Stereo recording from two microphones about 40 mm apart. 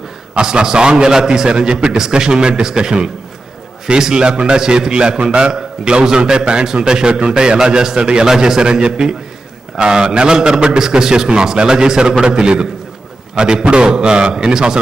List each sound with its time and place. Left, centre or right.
0.4 s a man's voice: centre